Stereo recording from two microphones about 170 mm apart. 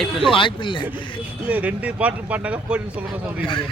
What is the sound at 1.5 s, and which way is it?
Speech, 10° right (ahead or behind).